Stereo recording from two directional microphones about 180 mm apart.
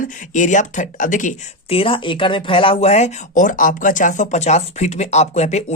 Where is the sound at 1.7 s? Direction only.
30° left (ahead or behind).